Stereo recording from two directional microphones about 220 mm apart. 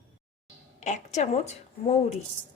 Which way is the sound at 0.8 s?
35° left (ahead or behind).